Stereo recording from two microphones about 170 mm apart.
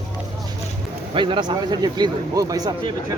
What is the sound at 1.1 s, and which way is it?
A man's voice, 30° right (ahead or behind).